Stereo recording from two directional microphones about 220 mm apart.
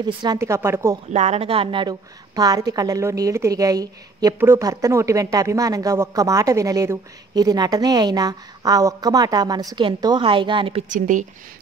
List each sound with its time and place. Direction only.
0.0 s a woman's voice: 20° right (ahead or behind)
1.1 s a woman's voice: 30° right (ahead or behind)
10.9 s speech: 35° right (ahead or behind)